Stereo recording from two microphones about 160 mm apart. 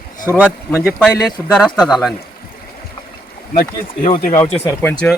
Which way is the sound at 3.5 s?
55° left (ahead or behind).